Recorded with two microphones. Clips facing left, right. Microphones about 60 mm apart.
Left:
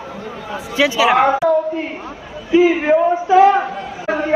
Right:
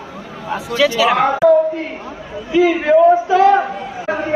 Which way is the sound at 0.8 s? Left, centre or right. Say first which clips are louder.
Left 1 dB; centre.